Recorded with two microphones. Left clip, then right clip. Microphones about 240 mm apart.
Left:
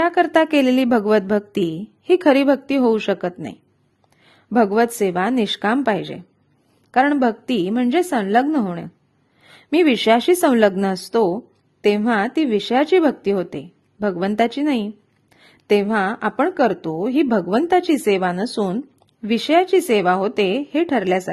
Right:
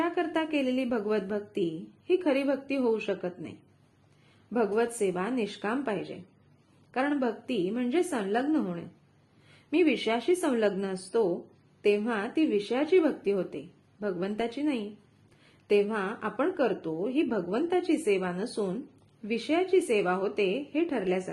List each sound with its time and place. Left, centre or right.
0.0 s a woman's voice: left
4.5 s a woman's voice: left